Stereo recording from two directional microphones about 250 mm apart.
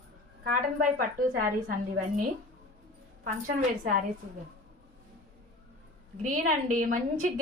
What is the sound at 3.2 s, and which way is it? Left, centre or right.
Speech, right.